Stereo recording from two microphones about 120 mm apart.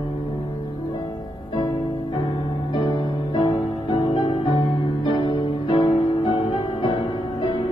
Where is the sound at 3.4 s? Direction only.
40° left (ahead or behind).